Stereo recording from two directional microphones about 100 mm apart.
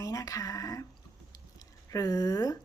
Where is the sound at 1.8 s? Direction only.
40° left (ahead or behind).